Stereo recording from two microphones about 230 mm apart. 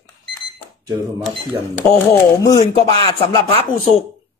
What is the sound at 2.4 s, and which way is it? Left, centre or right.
Speech, centre.